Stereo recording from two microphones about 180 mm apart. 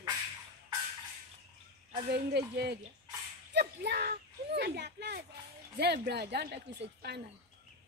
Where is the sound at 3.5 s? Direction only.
65° right (ahead or behind).